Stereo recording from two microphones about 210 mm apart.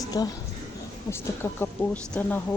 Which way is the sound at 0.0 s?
15° left (ahead or behind).